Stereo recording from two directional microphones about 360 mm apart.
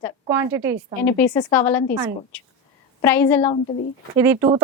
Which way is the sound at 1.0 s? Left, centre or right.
Centre.